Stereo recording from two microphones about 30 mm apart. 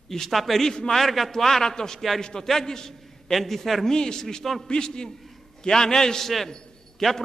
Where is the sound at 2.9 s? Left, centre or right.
Centre.